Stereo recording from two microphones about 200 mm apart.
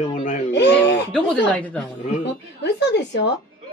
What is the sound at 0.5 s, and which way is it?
Speech, 60° left (ahead or behind).